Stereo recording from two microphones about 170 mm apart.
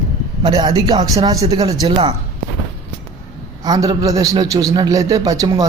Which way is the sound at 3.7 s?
20° right (ahead or behind).